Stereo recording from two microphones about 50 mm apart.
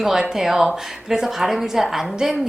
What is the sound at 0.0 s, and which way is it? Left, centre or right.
Speech, centre.